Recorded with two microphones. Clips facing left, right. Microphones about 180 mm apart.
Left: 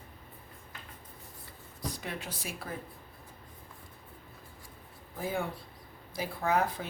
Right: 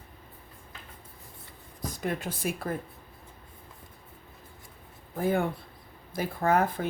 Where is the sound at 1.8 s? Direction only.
50° right (ahead or behind).